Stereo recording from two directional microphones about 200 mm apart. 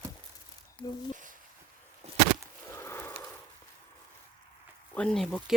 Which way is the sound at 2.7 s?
15° left (ahead or behind).